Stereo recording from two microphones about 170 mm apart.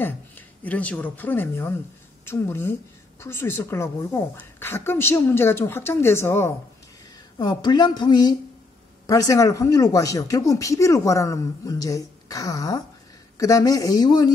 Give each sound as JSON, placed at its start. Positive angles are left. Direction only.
{"t": 0.7, "sound": "a woman's voice", "side_deg": 10}
{"t": 7.3, "sound": "speech", "side_deg": 25}